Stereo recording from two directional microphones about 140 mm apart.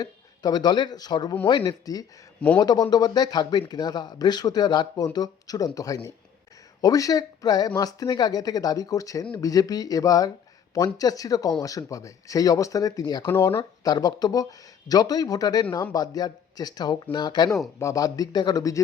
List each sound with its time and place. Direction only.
0.0 s speech: 30° left (ahead or behind)